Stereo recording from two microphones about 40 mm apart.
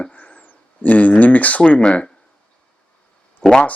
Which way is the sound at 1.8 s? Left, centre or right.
Left.